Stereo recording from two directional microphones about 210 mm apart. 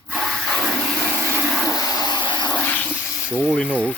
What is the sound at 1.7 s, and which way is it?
Water, 15° left (ahead or behind).